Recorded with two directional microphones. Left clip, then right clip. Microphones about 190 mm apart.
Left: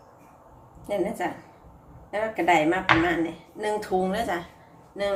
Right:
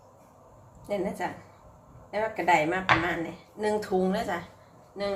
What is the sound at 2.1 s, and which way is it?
Speech, 5° left (ahead or behind).